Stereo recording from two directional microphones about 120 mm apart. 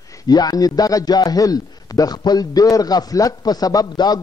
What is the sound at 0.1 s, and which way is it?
A man's voice, 30° left (ahead or behind).